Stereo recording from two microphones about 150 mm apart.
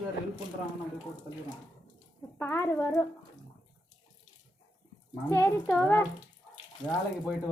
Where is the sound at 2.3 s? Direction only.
15° left (ahead or behind).